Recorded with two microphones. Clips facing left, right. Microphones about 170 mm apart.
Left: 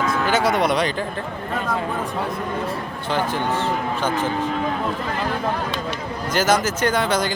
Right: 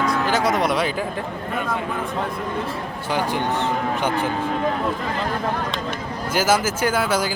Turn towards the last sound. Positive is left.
turn(degrees=-5)  # may be behind; listen again after turning